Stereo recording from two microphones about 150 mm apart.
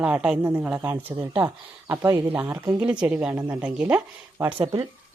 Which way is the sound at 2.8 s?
5° right (ahead or behind).